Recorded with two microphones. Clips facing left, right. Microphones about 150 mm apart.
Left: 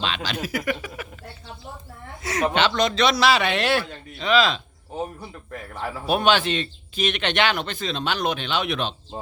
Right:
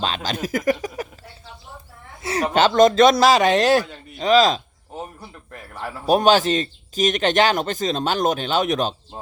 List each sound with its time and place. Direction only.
0.0 s a man's voice: 40° right (ahead or behind)
2.2 s a woman's voice: 30° right (ahead or behind)
2.5 s a man's voice: 40° right (ahead or behind)
4.9 s a man's voice: centre (ahead or behind)
6.1 s a man's voice: 40° right (ahead or behind)